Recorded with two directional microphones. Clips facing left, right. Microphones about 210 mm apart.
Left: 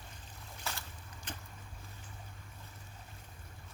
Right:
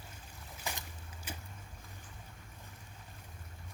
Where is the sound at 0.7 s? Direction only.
15° right (ahead or behind).